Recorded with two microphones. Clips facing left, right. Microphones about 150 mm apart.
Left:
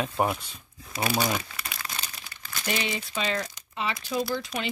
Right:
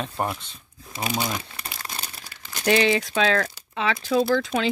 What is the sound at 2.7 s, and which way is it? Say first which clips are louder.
Speech: right 11 dB; 90° right.